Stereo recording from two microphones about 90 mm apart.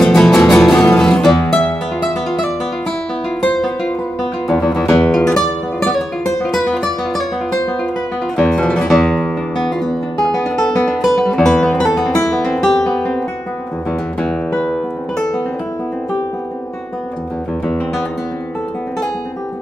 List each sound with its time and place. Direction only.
0.0 s music: 5° left (ahead or behind)
3.5 s music: 5° left (ahead or behind)
5.0 s music: 25° left (ahead or behind)
5.3 s music: 5° left (ahead or behind)
8.4 s music: 10° left (ahead or behind)
12.4 s guitar: centre (ahead or behind)
14.2 s music: 10° left (ahead or behind)